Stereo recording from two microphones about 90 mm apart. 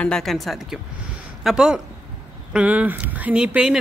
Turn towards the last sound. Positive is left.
turn(degrees=-10)  # may be behind; listen again after turning